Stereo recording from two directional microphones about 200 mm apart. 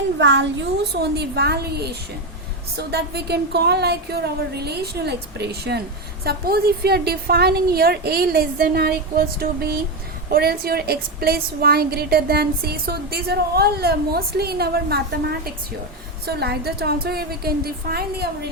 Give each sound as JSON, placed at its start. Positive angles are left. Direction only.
{"t": 0.2, "sound": "a woman's voice", "side_deg": -60}